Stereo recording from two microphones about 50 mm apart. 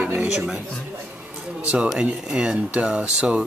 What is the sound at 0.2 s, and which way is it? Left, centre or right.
Speech, centre.